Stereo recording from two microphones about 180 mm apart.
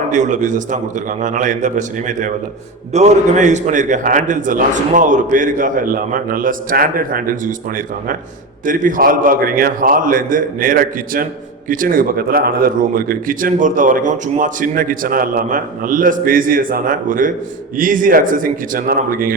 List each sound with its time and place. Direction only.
0.1 s a man's voice: 45° right (ahead or behind)
8.6 s a man's voice: 50° right (ahead or behind)